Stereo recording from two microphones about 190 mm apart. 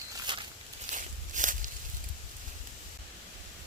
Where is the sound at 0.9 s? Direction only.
40° right (ahead or behind).